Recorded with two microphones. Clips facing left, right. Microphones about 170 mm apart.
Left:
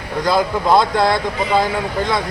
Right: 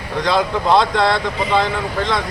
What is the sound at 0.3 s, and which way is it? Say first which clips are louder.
Speech: left 1 dB; 10° left (ahead or behind).